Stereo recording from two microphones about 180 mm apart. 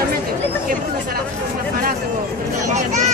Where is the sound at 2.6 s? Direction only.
40° right (ahead or behind).